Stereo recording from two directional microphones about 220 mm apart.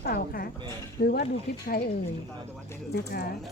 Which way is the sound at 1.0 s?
40° left (ahead or behind).